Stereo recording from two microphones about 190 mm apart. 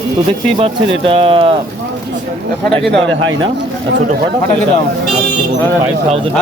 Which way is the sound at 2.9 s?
90° right.